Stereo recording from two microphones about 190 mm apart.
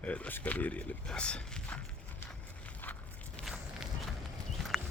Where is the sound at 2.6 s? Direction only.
5° left (ahead or behind).